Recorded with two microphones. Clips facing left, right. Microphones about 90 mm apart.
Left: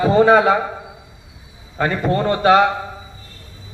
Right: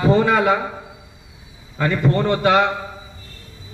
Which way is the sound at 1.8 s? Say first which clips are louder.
Even; 35° left (ahead or behind).